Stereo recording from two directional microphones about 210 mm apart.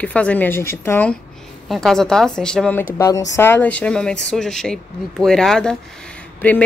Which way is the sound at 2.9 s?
15° left (ahead or behind).